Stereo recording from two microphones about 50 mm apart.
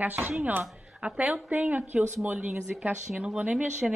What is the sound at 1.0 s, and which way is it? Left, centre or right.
Speech, right.